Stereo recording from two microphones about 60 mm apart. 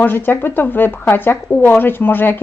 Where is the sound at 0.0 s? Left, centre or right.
Left.